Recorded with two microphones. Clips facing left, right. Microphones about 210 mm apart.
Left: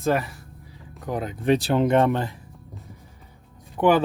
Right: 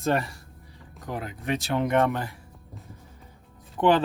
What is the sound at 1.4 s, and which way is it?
Speech, 30° left (ahead or behind).